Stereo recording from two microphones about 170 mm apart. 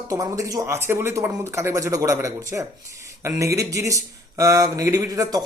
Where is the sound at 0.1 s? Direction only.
20° right (ahead or behind).